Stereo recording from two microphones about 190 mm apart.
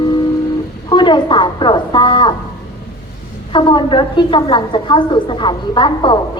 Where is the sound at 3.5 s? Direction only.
25° left (ahead or behind).